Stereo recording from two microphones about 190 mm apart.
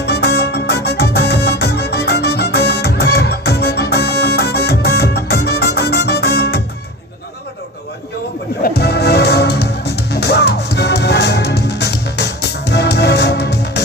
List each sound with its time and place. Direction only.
0.0 s music: 60° left (ahead or behind)
8.6 s music: 55° left (ahead or behind)